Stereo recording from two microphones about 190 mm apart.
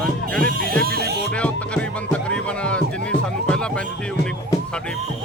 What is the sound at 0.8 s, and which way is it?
Music, 55° right (ahead or behind).